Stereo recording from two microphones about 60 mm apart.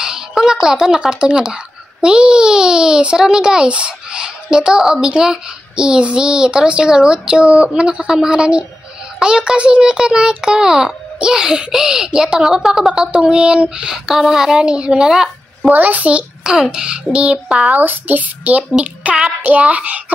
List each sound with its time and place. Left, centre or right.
0.0 s a sound: centre
0.7 s a child's voice: centre
13.9 s a child's voice: centre
15.7 s a child's voice: right
17.7 s a child's voice: right
18.8 s a child's voice: centre